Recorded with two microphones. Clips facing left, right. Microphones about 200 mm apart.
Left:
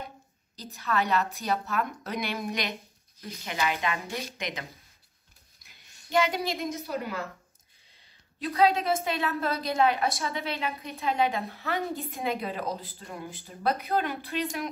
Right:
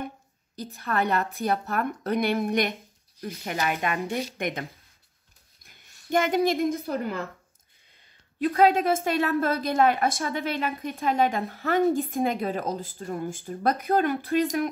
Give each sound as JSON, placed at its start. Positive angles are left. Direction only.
{"t": 0.6, "sound": "a woman's voice", "side_deg": -55}
{"t": 8.4, "sound": "a woman's voice", "side_deg": -50}